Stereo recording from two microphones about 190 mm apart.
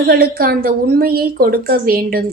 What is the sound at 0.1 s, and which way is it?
A woman's voice, 55° right (ahead or behind).